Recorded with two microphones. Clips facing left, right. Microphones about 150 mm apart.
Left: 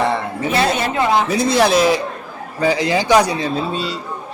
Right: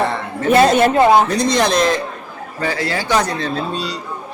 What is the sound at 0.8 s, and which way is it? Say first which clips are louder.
Speech: right 6 dB; 50° right (ahead or behind).